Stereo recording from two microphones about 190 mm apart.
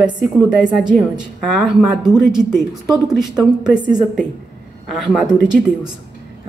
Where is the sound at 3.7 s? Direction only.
25° right (ahead or behind).